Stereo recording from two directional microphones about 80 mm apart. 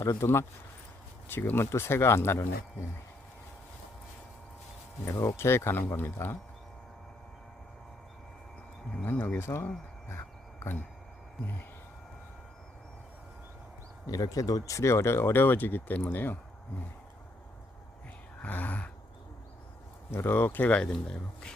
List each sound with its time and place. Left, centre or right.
0.0 s speech: left
5.0 s speech: left
9.0 s speech: left
14.1 s speech: left
18.4 s speech: left
20.1 s speech: left; by 21.5 s centre